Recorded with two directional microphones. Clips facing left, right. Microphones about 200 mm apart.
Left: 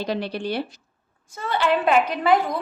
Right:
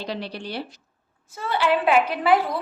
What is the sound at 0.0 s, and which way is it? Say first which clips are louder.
Speech: left 5 dB; 50° left (ahead or behind).